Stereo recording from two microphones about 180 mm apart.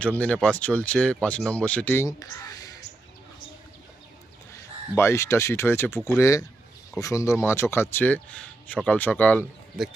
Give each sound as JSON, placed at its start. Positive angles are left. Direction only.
{"t": 0.2, "sound": "speech", "side_deg": 5}
{"t": 4.5, "sound": "speech", "side_deg": 15}